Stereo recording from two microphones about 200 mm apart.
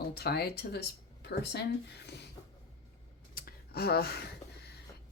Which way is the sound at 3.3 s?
50° left (ahead or behind).